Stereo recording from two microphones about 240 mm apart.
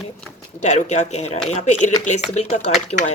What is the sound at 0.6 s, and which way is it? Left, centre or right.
Speech, left.